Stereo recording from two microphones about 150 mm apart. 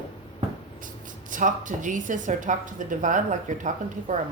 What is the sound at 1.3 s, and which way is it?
A woman's voice, 60° right (ahead or behind).